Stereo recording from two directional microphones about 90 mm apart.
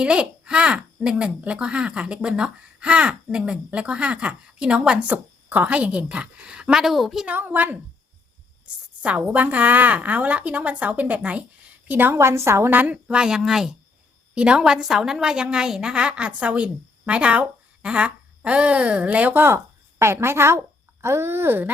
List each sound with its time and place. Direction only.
0.0 s speech: 10° right (ahead or behind)
7.3 s a woman's voice: 20° right (ahead or behind)
9.0 s a woman's voice: 15° right (ahead or behind)